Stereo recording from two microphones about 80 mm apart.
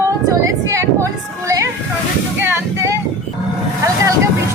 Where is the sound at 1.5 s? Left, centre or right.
Right.